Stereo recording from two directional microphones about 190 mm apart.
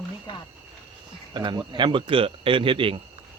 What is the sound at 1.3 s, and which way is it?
Speech, 20° right (ahead or behind).